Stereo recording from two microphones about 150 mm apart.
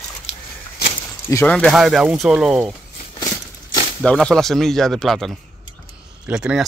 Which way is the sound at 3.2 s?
25° left (ahead or behind).